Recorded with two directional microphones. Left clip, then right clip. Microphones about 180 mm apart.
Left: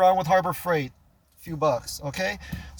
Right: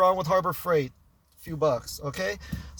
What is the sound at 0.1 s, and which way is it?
Speech, 10° right (ahead or behind).